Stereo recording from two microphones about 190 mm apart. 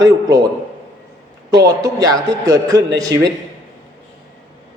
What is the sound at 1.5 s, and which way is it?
A man's voice, 20° right (ahead or behind).